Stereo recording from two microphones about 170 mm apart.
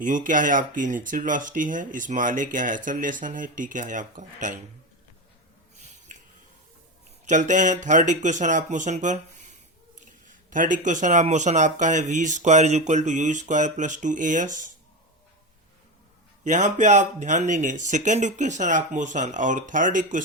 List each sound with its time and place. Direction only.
0.0 s speech: 50° right (ahead or behind)
7.3 s speech: 45° right (ahead or behind)
16.4 s speech: 45° right (ahead or behind)